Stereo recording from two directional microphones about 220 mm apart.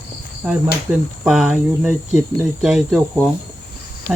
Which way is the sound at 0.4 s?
5° right (ahead or behind).